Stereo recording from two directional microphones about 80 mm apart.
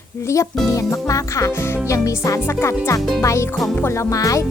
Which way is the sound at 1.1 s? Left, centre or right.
Left.